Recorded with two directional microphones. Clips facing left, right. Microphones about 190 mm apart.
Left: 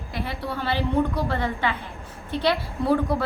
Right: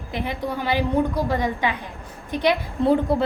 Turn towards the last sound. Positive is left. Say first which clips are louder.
# right 3 dB
turn(degrees=-25)  # may be behind; listen again after turning